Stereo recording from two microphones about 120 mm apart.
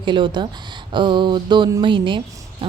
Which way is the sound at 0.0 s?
40° right (ahead or behind).